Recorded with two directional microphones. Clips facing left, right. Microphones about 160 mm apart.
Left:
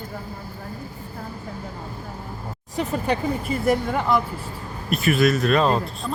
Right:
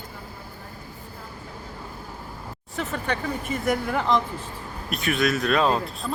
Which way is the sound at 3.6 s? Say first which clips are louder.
Left 2 dB; centre (ahead or behind).